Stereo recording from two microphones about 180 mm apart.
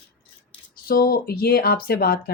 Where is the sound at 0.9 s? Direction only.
55° left (ahead or behind).